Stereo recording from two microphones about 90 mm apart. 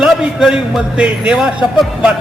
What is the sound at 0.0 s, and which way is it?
Speech, 5° right (ahead or behind).